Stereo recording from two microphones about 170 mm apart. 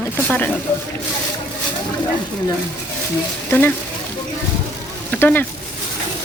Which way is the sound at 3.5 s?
10° left (ahead or behind).